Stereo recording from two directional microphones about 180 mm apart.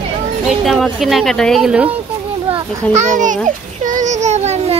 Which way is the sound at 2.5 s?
40° right (ahead or behind).